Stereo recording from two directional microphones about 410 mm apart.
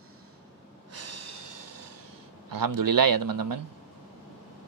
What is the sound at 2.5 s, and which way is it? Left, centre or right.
A man's voice, right.